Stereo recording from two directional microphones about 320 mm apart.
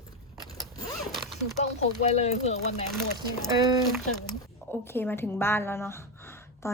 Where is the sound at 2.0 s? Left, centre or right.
Left.